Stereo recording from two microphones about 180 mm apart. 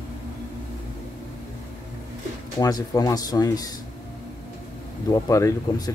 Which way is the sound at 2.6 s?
20° left (ahead or behind).